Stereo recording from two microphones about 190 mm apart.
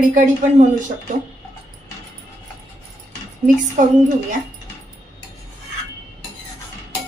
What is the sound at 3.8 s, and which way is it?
Speech, 45° right (ahead or behind).